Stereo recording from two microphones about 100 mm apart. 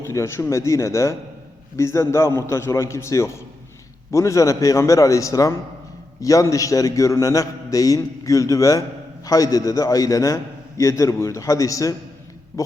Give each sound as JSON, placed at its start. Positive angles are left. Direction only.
{"t": 0.0, "sound": "a man's voice", "side_deg": 30}